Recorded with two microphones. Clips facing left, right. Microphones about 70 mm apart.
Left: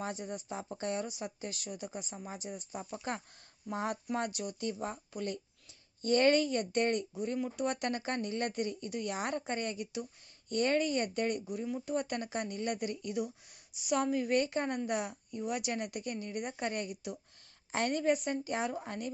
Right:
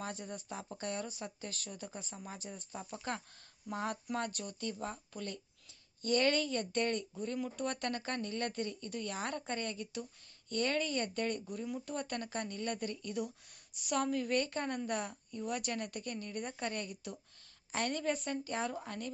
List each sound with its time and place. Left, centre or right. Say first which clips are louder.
0.0 s speech: left 4 dB; left